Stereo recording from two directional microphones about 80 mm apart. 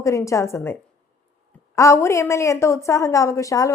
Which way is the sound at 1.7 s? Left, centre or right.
Left.